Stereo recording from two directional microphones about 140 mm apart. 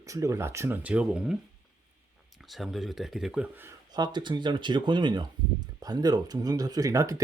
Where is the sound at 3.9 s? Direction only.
30° right (ahead or behind).